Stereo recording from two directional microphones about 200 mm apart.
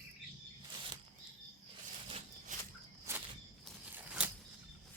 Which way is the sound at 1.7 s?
30° right (ahead or behind).